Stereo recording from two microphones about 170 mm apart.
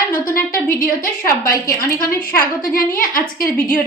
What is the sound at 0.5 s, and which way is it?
A woman's voice, 55° left (ahead or behind).